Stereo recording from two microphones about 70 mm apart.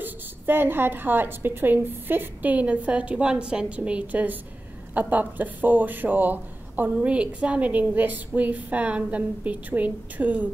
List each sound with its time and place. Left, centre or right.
0.0 s a woman's voice: right